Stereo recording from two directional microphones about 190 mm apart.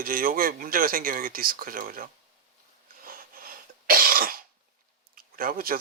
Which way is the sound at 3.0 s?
50° right (ahead or behind).